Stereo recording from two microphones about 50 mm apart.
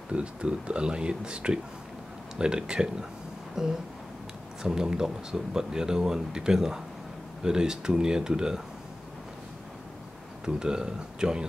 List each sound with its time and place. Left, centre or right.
0.1 s speech: right
10.4 s speech: centre